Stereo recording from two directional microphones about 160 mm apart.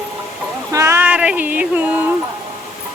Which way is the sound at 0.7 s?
15° right (ahead or behind).